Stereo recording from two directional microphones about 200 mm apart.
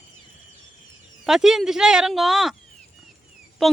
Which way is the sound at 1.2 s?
Centre (ahead or behind).